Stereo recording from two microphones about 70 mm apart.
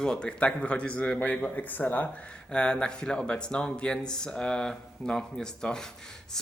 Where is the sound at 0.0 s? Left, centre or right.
Centre.